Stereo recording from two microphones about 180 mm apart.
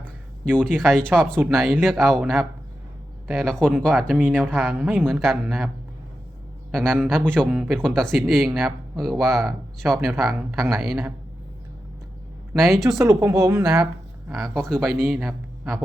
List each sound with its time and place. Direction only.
0.0 s a sound: 5° left (ahead or behind)
1.4 s speech: centre (ahead or behind)
4.3 s speech: 5° left (ahead or behind)
12.5 s speech: centre (ahead or behind)
13.0 s a woman's voice: 20° right (ahead or behind)
14.5 s speech: centre (ahead or behind)